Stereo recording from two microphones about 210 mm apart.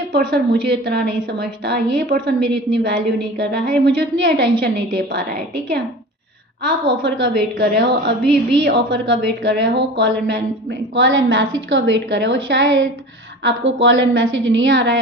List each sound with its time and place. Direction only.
0.1 s a woman's voice: 50° right (ahead or behind)
6.6 s a woman's voice: 55° right (ahead or behind)